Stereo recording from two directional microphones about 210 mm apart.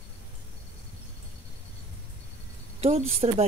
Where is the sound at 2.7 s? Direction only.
30° right (ahead or behind).